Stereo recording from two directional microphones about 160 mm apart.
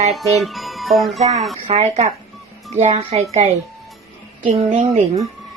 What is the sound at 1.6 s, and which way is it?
A woman's voice, 45° right (ahead or behind).